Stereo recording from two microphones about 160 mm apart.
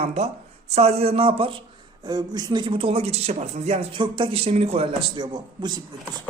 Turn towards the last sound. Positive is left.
turn(degrees=-30)  # may be behind; listen again after turning